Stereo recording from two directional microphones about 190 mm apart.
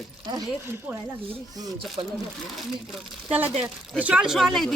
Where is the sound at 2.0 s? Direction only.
25° right (ahead or behind).